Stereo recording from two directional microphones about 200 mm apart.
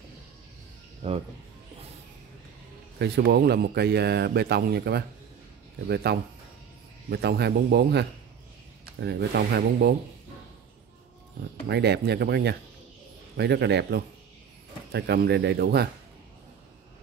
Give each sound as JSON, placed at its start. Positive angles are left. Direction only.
{"t": 1.0, "sound": "speech", "side_deg": -35}
{"t": 3.0, "sound": "a man's voice", "side_deg": -55}
{"t": 11.7, "sound": "a man's voice", "side_deg": -55}